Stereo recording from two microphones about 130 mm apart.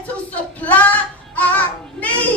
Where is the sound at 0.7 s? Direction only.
10° left (ahead or behind).